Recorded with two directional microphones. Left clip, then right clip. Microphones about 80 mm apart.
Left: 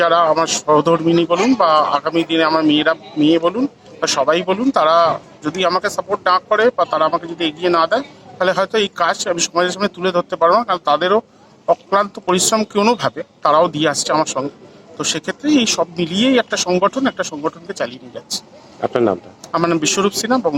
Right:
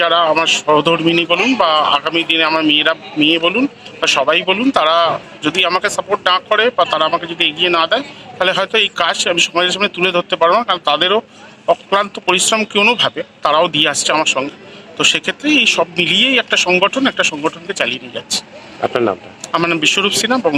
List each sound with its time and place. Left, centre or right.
0.0 s a man's voice: left